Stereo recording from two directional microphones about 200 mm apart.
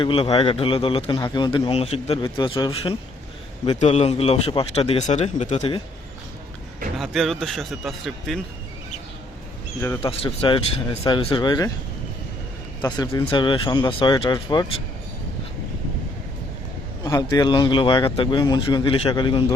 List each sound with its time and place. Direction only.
0.0 s a man's voice: 25° left (ahead or behind)
7.0 s speech: centre (ahead or behind)
9.8 s speech: 15° left (ahead or behind)
10.1 s a man's voice: 25° left (ahead or behind)
12.8 s a man's voice: 20° left (ahead or behind)
17.0 s a man's voice: 20° left (ahead or behind)